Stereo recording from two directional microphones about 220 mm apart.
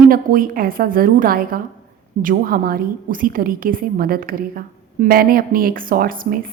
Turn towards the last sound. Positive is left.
turn(degrees=-40)  # may be behind; listen again after turning